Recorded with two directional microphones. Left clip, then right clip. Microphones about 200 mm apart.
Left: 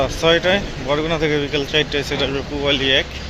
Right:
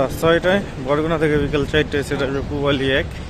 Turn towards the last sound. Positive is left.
turn(degrees=-25)  # may be behind; listen again after turning